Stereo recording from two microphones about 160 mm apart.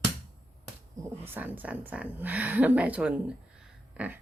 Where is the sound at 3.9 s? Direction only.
10° right (ahead or behind).